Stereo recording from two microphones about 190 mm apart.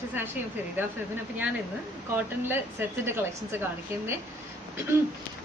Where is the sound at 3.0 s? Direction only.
10° right (ahead or behind).